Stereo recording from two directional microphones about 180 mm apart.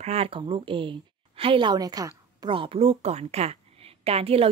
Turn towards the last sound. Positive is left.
turn(degrees=-35)  # may be behind; listen again after turning